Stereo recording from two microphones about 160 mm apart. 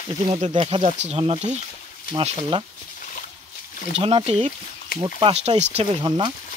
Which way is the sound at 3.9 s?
40° right (ahead or behind).